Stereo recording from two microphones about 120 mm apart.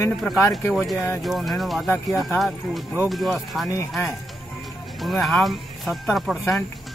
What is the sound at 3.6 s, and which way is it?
Speech, 25° left (ahead or behind).